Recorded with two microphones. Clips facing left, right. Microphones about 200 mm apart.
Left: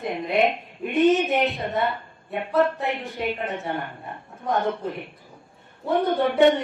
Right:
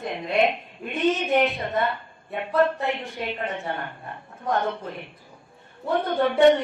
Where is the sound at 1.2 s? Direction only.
Centre (ahead or behind).